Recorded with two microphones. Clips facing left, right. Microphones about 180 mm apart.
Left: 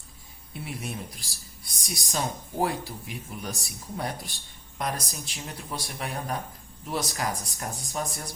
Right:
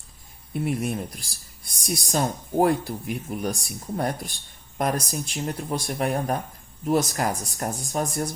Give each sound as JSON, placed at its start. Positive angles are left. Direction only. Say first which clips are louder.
{"t": 0.5, "sound": "speech", "louder": "right 10 dB", "side_deg": -50}